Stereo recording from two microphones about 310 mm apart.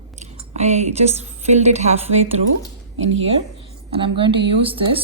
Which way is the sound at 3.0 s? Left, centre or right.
Right.